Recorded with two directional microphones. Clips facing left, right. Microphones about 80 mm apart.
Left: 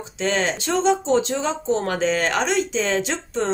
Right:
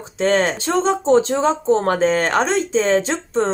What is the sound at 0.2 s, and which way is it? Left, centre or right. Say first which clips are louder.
Speech: right 5 dB; right.